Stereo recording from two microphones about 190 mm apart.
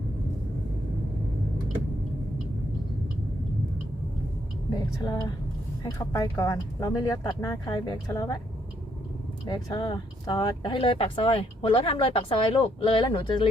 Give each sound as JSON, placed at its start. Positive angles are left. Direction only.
{"t": 4.7, "sound": "speech", "side_deg": 20}
{"t": 9.5, "sound": "speech", "side_deg": 20}